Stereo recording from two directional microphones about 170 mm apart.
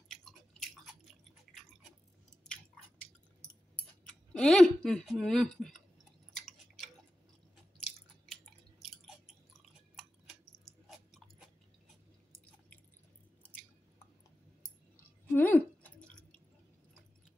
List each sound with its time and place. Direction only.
0.1 s chewing: centre (ahead or behind)
4.1 s speech: 5° left (ahead or behind)
6.3 s chewing: 5° left (ahead or behind)
15.2 s chewing: 10° left (ahead or behind)